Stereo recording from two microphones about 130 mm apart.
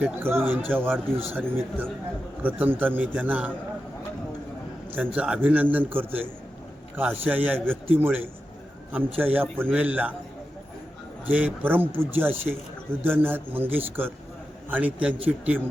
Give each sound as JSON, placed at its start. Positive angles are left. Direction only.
{"t": 0.0, "sound": "a man's voice", "side_deg": -15}
{"t": 4.9, "sound": "a man's voice", "side_deg": -10}
{"t": 11.3, "sound": "a man's voice", "side_deg": -10}